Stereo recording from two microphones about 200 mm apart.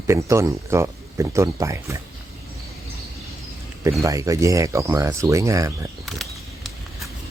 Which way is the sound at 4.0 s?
15° right (ahead or behind).